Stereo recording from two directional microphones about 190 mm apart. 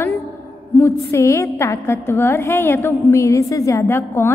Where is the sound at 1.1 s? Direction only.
15° left (ahead or behind).